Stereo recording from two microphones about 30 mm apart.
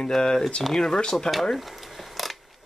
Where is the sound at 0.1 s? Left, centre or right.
Left.